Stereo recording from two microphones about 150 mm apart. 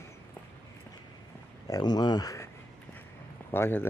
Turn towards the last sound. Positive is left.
turn(degrees=15)  # may be behind; listen again after turning